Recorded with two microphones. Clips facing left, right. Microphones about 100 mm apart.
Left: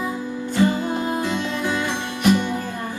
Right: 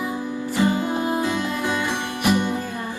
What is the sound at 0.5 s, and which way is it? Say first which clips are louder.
Music: left 1 dB; 15° right (ahead or behind).